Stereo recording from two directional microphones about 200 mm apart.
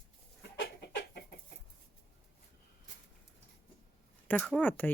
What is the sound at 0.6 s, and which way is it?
Chicken, 55° left (ahead or behind).